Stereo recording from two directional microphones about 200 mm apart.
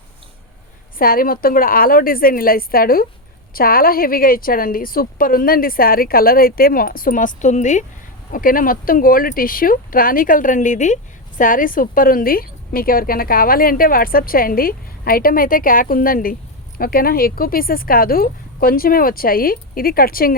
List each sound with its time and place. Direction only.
0.9 s speech: 45° left (ahead or behind)